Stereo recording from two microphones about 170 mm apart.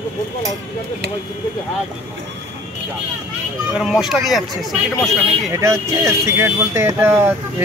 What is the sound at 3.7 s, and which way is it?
Speech, 5° right (ahead or behind).